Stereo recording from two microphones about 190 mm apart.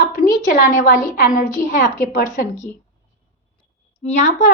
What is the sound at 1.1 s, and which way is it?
A woman's voice, 45° left (ahead or behind).